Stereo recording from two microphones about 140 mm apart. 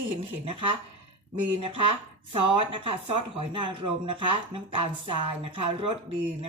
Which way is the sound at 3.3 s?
40° right (ahead or behind).